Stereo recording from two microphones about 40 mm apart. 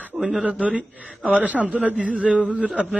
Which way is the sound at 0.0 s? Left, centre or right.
Right.